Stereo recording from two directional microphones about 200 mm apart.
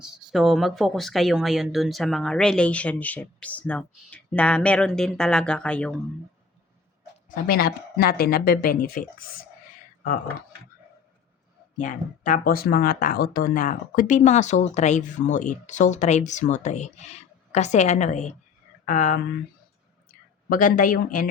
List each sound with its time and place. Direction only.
0.0 s speech: 5° right (ahead or behind)
7.3 s speech: 45° left (ahead or behind)
11.8 s speech: 40° left (ahead or behind)
20.5 s speech: 45° left (ahead or behind)